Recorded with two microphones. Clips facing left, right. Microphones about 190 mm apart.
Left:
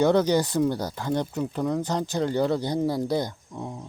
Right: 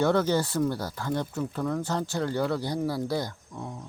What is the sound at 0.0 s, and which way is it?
Speech, 20° left (ahead or behind).